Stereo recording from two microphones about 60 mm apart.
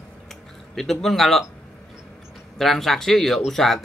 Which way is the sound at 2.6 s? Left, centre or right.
Centre.